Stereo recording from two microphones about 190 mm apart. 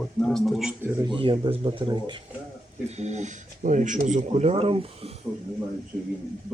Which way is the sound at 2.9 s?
35° right (ahead or behind).